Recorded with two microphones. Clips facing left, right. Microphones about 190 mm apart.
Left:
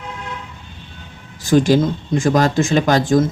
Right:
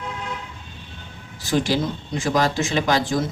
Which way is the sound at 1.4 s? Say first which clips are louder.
Left 8 dB; 50° left (ahead or behind).